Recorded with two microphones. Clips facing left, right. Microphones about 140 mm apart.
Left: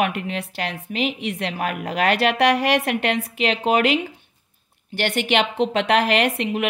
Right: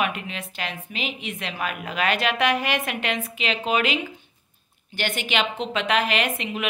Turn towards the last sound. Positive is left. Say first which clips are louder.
# left 5 dB
turn(degrees=65)  # may be behind; listen again after turning